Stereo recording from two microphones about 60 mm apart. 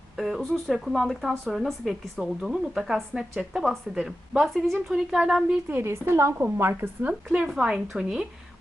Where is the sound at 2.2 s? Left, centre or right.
Centre.